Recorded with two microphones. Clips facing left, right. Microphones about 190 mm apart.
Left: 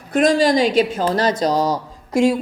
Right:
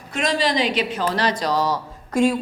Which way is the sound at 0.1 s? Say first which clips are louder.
Left 7 dB; 50° left (ahead or behind).